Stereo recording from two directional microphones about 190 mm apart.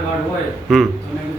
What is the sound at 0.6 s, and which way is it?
Speech, centre (ahead or behind).